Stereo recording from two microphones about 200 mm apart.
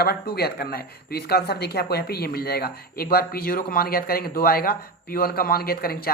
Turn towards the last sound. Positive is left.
turn(degrees=50)  # may be behind; listen again after turning